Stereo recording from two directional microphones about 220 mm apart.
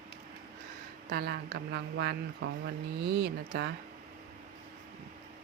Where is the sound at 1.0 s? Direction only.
45° right (ahead or behind).